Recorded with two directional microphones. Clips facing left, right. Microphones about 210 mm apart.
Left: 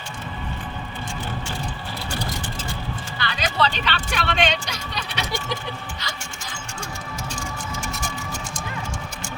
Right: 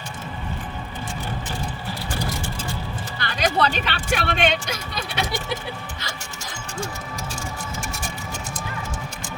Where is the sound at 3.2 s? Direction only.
45° right (ahead or behind).